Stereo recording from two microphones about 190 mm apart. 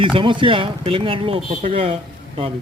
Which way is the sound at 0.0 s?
25° right (ahead or behind).